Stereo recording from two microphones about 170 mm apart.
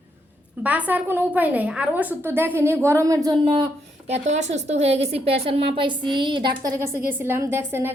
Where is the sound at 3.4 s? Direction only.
35° right (ahead or behind).